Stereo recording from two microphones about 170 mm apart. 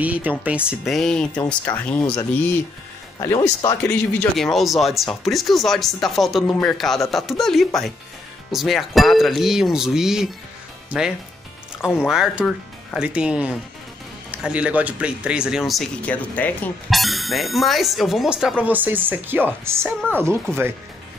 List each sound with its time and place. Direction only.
0.0 s speech: 10° right (ahead or behind); by 2.0 s 10° left (ahead or behind)
3.2 s speech: 20° left (ahead or behind)
3.8 s speech: 10° left (ahead or behind); by 20.3 s 10° right (ahead or behind)